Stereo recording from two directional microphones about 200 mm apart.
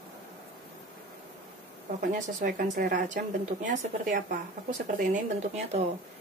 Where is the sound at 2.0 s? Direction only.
40° right (ahead or behind).